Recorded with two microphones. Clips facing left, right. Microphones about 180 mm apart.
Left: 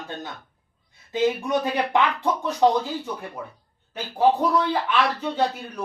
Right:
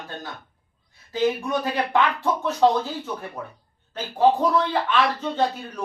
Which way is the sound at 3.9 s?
10° left (ahead or behind).